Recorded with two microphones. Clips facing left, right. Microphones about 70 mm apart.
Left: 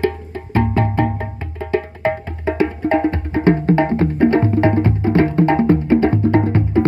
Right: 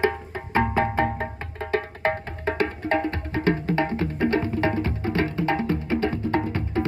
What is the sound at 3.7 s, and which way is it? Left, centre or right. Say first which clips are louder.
Music: left 9 dB; left.